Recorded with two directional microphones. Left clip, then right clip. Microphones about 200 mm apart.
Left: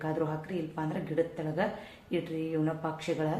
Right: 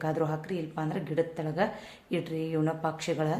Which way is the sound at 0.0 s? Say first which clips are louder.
Right 2 dB; 50° right (ahead or behind).